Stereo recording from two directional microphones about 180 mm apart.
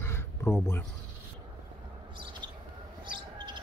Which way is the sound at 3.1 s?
25° right (ahead or behind).